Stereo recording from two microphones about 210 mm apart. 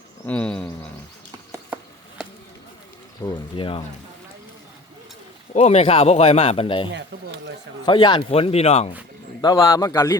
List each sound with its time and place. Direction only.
0.3 s a sound: 5° left (ahead or behind)
1.5 s a sound: 5° right (ahead or behind)
3.2 s speech: 20° left (ahead or behind)
5.5 s speech: 30° left (ahead or behind)
6.9 s speech: 55° right (ahead or behind)
7.9 s speech: 20° left (ahead or behind)
9.4 s a man's voice: 20° left (ahead or behind)